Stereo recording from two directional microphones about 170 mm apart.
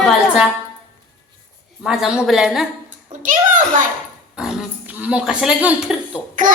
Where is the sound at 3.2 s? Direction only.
50° right (ahead or behind).